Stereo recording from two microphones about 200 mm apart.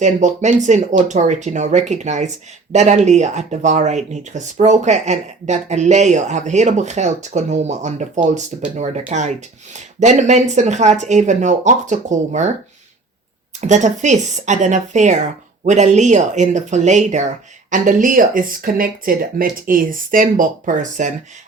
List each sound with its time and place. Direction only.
0.0 s speech: 35° right (ahead or behind)
13.6 s speech: 35° right (ahead or behind)